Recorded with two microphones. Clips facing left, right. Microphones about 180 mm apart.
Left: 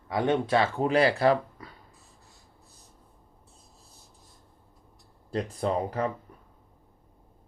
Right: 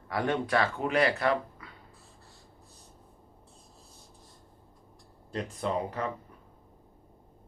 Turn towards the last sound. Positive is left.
turn(degrees=35)  # may be behind; listen again after turning